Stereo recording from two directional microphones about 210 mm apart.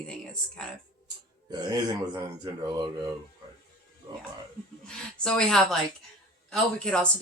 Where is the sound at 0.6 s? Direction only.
5° left (ahead or behind).